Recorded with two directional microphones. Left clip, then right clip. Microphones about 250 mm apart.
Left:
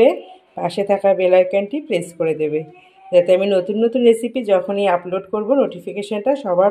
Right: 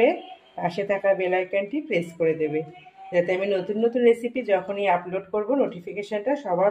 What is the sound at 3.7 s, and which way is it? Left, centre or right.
Speech, left.